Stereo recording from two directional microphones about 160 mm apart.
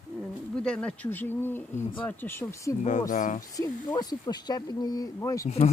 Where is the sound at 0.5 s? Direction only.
5° left (ahead or behind).